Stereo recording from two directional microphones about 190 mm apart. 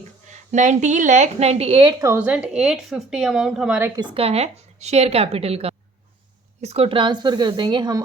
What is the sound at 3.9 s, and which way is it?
A woman's voice, 30° right (ahead or behind).